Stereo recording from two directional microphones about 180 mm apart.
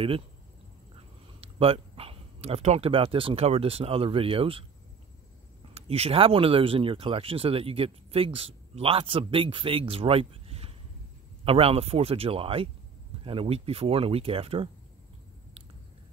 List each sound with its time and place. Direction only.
1.4 s speech: 30° right (ahead or behind)
5.8 s speech: 35° right (ahead or behind)